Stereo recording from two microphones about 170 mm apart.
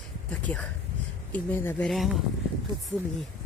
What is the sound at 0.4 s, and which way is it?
A woman's voice, 5° left (ahead or behind).